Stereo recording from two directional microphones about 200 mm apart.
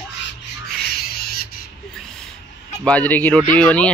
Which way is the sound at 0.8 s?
50° left (ahead or behind).